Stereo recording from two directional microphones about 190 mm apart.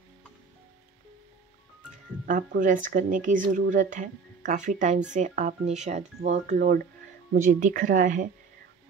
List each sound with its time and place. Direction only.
2.2 s speech: 45° right (ahead or behind)